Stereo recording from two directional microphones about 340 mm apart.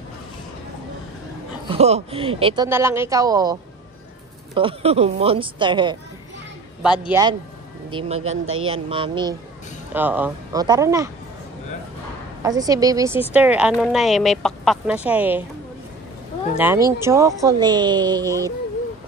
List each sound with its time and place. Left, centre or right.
1.7 s speech: centre
4.6 s speech: centre
7.1 s speech: centre
12.4 s a woman's voice: centre
16.5 s speech: centre